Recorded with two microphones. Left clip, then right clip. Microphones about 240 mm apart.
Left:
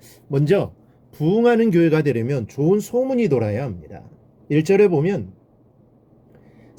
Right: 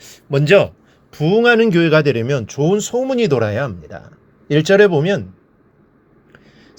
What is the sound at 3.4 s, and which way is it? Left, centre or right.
Speech, right.